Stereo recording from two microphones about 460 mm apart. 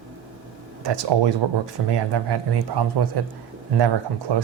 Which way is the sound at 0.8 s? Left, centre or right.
Right.